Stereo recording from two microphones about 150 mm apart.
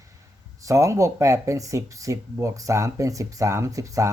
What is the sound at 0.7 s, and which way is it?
Speech, 20° right (ahead or behind).